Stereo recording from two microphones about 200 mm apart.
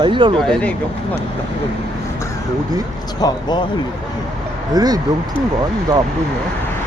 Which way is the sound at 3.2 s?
20° left (ahead or behind).